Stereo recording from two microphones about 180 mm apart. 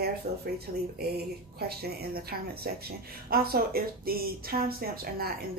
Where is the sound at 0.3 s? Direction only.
35° right (ahead or behind).